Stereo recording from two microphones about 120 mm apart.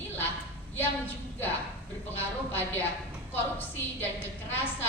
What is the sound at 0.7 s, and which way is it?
A woman's voice, 15° left (ahead or behind).